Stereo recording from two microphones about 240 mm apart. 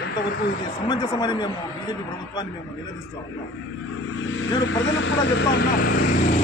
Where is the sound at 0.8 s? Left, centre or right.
Centre.